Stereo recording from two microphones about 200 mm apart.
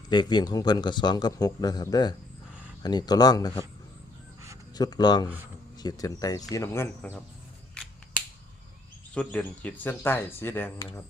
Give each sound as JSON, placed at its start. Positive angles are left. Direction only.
{"t": 0.1, "sound": "speech", "side_deg": 20}
{"t": 4.7, "sound": "speech", "side_deg": 20}
{"t": 9.1, "sound": "speech", "side_deg": 5}